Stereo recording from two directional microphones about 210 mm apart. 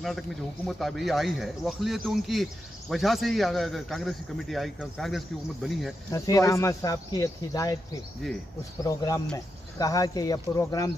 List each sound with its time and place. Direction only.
0.7 s a man's voice: centre (ahead or behind)
6.1 s speech: 15° left (ahead or behind)